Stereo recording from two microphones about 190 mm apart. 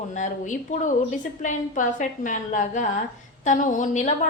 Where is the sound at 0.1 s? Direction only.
40° left (ahead or behind).